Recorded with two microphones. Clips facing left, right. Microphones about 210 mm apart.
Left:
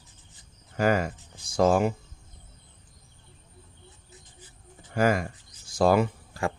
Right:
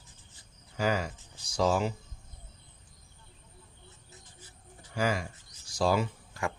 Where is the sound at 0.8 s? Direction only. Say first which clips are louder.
Left 6 dB; 55° left (ahead or behind).